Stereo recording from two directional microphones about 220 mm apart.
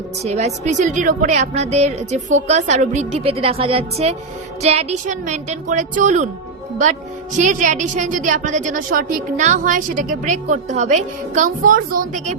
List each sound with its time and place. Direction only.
0.2 s a woman's voice: 30° right (ahead or behind)
7.3 s a woman's voice: 35° right (ahead or behind)